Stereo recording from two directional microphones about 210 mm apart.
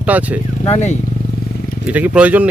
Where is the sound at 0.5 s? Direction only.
30° left (ahead or behind).